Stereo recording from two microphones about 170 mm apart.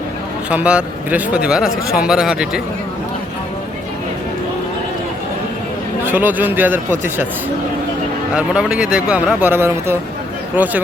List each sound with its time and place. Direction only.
0.5 s speech: 5° right (ahead or behind)
6.0 s speech: 10° right (ahead or behind)
8.4 s speech: 5° right (ahead or behind)